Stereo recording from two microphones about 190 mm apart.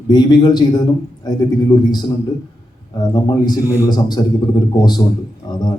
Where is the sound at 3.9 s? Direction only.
20° left (ahead or behind).